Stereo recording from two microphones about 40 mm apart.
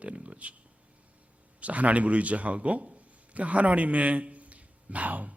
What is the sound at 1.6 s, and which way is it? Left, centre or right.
A man's voice, right.